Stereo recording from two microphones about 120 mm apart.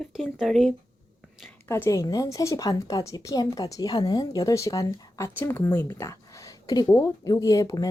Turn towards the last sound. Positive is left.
turn(degrees=30)  # may be behind; listen again after turning